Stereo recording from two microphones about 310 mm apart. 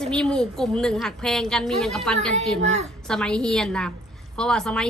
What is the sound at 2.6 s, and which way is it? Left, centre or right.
Speech, right.